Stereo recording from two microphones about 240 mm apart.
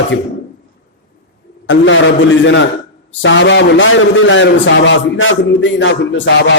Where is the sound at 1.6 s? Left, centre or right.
Left.